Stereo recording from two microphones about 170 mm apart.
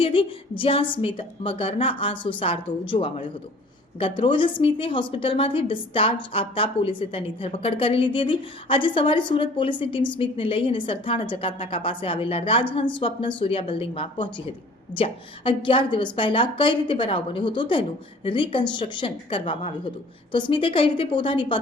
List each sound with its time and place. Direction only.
0.0 s a woman's voice: 30° left (ahead or behind)